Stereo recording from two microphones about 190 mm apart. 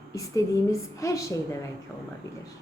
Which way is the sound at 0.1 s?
15° left (ahead or behind).